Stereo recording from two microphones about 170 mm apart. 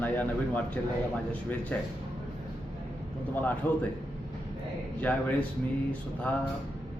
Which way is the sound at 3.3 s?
10° left (ahead or behind).